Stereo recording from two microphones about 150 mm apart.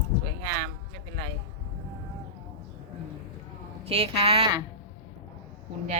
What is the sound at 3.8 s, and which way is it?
Speech, 40° right (ahead or behind).